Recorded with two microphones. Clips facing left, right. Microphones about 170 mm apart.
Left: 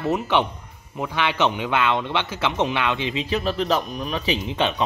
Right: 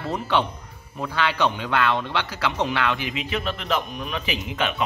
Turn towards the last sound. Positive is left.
turn(degrees=30)  # may be behind; listen again after turning